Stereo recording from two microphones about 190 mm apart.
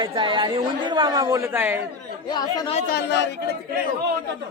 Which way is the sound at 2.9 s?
60° left (ahead or behind).